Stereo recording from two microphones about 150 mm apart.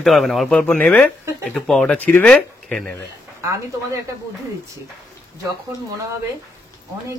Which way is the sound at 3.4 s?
20° right (ahead or behind).